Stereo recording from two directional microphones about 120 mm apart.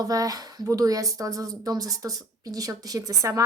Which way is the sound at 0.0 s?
30° right (ahead or behind).